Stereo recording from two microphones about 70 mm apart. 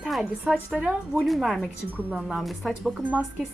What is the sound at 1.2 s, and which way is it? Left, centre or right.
A woman's voice, centre.